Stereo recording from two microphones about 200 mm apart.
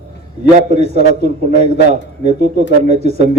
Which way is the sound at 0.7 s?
35° right (ahead or behind).